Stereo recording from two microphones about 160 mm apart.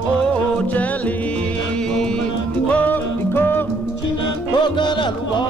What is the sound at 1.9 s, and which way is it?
Music, 5° left (ahead or behind).